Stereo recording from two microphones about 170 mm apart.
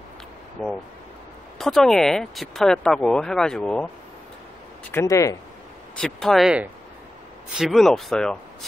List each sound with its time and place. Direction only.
0.6 s speech: centre (ahead or behind)
4.9 s speech: 20° left (ahead or behind)
5.9 s speech: 5° left (ahead or behind)